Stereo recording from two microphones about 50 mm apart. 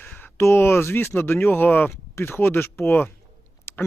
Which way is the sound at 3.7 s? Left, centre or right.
Left.